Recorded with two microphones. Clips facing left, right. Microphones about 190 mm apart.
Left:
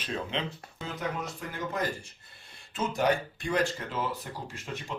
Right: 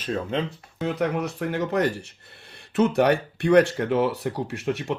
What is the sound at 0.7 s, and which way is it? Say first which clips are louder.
Speech: right 11 dB; 70° right (ahead or behind).